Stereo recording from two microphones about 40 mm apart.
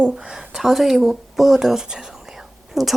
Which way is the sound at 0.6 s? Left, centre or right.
Centre.